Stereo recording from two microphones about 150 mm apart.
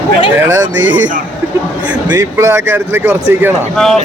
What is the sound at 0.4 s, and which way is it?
Speech, 15° right (ahead or behind).